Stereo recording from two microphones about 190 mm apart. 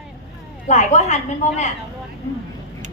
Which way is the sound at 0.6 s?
40° left (ahead or behind).